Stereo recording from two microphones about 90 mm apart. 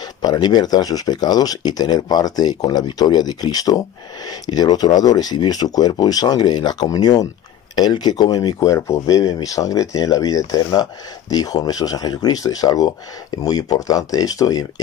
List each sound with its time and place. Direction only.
0.2 s speech: 50° left (ahead or behind)
8.6 s speech: 35° left (ahead or behind)